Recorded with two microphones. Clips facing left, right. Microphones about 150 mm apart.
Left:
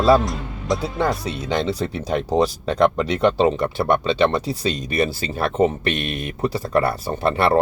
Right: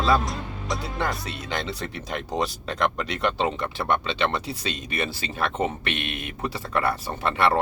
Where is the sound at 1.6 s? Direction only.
40° left (ahead or behind).